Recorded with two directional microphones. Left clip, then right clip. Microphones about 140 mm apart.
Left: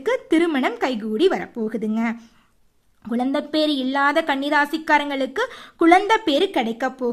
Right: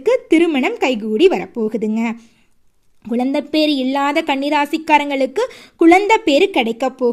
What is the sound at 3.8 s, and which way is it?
Speech, 20° right (ahead or behind).